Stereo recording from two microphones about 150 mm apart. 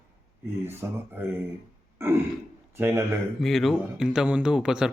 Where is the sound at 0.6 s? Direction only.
15° right (ahead or behind).